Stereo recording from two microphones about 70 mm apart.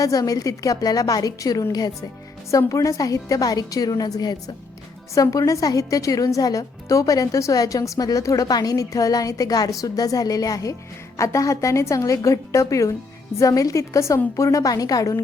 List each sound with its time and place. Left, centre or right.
0.0 s a woman's voice: left
2.5 s a woman's voice: left
5.1 s a woman's voice: left